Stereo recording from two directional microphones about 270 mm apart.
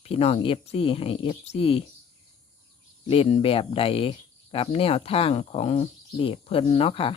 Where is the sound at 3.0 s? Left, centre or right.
Left.